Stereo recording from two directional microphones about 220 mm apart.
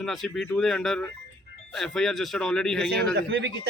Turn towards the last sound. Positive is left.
turn(degrees=-55)  # may be behind; listen again after turning